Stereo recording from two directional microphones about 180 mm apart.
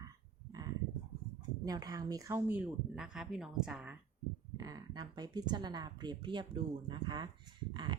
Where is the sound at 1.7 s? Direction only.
20° right (ahead or behind); by 4.0 s 5° right (ahead or behind).